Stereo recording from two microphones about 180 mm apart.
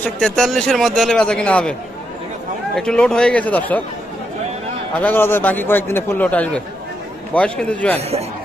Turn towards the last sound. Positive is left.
turn(degrees=5)  # may be behind; listen again after turning